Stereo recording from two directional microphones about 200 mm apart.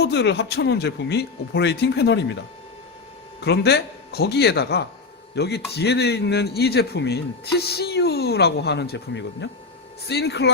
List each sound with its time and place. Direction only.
0.0 s a man's voice: 55° left (ahead or behind)
3.4 s a man's voice: 55° left (ahead or behind)